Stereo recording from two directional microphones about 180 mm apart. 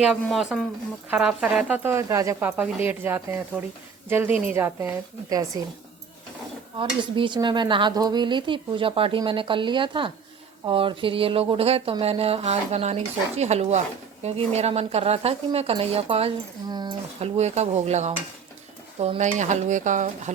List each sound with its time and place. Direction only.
0.0 s speech: centre (ahead or behind); by 5.6 s 20° right (ahead or behind)
6.7 s stir: 25° right (ahead or behind)
10.7 s speech: 30° right (ahead or behind)
17.2 s speech: 35° right (ahead or behind)